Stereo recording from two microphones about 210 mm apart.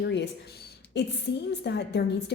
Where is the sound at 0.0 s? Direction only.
55° left (ahead or behind).